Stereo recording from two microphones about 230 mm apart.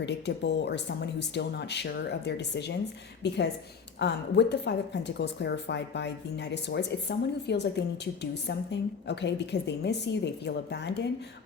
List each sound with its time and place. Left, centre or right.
0.0 s a woman's voice: left